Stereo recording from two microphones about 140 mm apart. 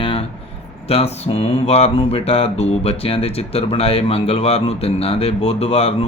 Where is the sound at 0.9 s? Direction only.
45° left (ahead or behind).